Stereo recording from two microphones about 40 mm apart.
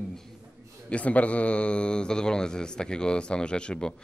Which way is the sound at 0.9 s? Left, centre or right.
Left.